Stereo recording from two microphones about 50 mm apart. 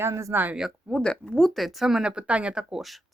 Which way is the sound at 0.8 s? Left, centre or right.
Centre.